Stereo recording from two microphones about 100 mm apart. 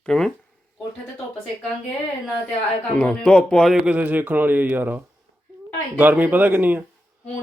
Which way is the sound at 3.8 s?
15° right (ahead or behind).